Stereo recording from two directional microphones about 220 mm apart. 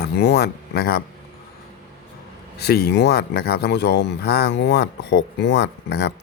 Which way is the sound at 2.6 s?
45° left (ahead or behind).